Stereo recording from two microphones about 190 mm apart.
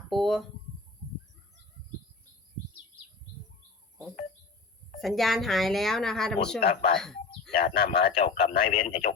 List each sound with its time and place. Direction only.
0.1 s speech: centre (ahead or behind)
4.9 s speech: centre (ahead or behind)
6.6 s speech: 55° left (ahead or behind)
8.1 s speech: 30° left (ahead or behind)